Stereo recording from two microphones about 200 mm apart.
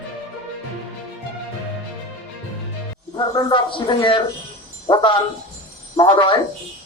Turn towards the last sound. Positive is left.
turn(degrees=25)  # may be behind; listen again after turning